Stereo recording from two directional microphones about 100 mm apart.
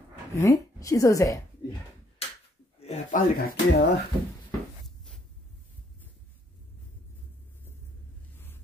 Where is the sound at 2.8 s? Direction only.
90° left.